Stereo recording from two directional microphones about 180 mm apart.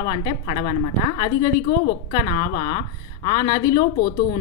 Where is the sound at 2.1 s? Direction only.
20° left (ahead or behind).